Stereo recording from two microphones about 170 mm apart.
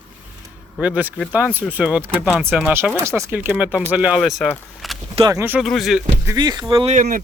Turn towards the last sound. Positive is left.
turn(degrees=-45)  # may be behind; listen again after turning